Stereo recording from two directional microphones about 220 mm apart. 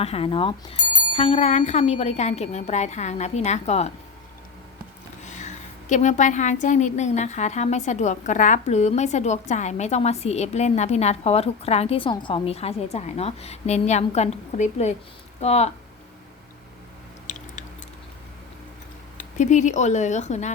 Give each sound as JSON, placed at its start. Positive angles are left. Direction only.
{"t": 0.0, "sound": "speech", "side_deg": 25}
{"t": 5.2, "sound": "a woman's voice", "side_deg": 35}
{"t": 17.2, "sound": "chewing", "side_deg": 35}
{"t": 19.1, "sound": "speech", "side_deg": 35}